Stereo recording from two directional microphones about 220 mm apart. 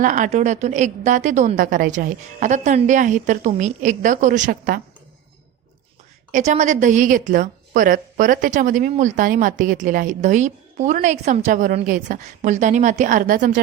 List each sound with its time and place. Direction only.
0.0 s a woman's voice: 35° right (ahead or behind)
6.3 s a woman's voice: 35° right (ahead or behind)